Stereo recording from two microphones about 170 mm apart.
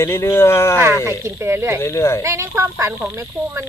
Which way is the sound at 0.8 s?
15° right (ahead or behind).